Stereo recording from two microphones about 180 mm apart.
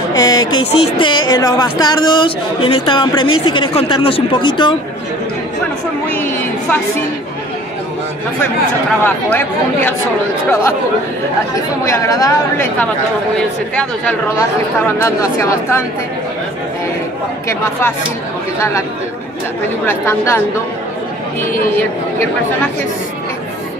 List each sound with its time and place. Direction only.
0.2 s a sound: 20° left (ahead or behind)
0.9 s speech: 25° left (ahead or behind)
6.1 s a woman's voice: 10° left (ahead or behind)
9.0 s a woman's voice: 10° left (ahead or behind)
11.8 s a woman's voice: 20° left (ahead or behind)
14.9 s a woman's voice: 15° left (ahead or behind)
17.5 s a woman's voice: 10° left (ahead or behind)
19.9 s a woman's voice: 15° left (ahead or behind)